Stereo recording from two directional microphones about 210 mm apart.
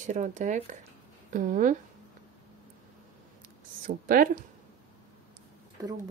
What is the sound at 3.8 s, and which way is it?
Speech, 45° right (ahead or behind).